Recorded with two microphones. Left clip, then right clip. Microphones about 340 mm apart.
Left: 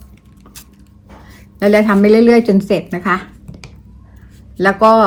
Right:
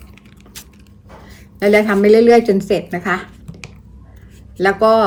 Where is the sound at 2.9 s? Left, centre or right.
Centre.